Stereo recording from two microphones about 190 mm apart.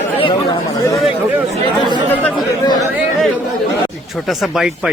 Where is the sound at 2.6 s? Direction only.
20° left (ahead or behind).